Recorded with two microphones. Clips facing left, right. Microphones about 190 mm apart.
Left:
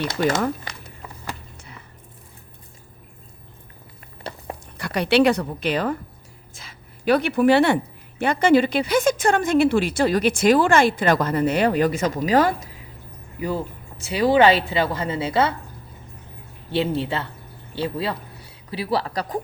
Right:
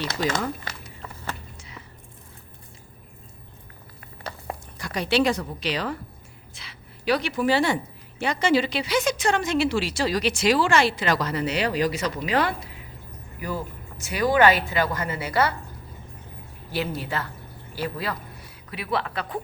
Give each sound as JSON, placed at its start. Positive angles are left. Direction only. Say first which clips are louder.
{"t": 0.2, "sound": "a woman's voice", "louder": "left 5 dB", "side_deg": 55}
{"t": 4.8, "sound": "a woman's voice", "louder": "left 5 dB", "side_deg": 65}
{"t": 14.1, "sound": "a woman's voice", "louder": "left 3 dB", "side_deg": 30}
{"t": 16.7, "sound": "a woman's voice", "louder": "left 6 dB", "side_deg": 25}